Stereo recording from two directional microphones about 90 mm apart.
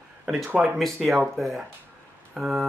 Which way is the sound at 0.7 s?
Centre (ahead or behind).